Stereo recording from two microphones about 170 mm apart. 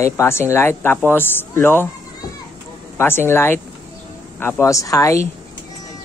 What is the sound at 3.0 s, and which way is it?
Speech, 15° left (ahead or behind).